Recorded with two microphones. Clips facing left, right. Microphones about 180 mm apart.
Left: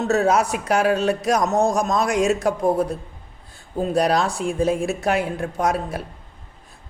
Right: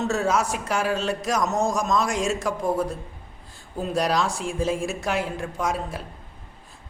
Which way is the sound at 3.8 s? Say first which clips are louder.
Left 4 dB; 60° left (ahead or behind).